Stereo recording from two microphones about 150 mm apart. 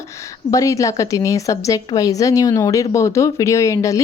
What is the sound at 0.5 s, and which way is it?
Speech, 20° left (ahead or behind).